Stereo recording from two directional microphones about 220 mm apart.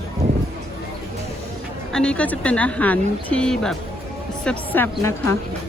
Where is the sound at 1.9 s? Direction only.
5° left (ahead or behind).